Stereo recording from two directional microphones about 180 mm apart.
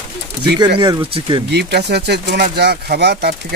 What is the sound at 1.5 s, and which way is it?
Speech, 65° right (ahead or behind).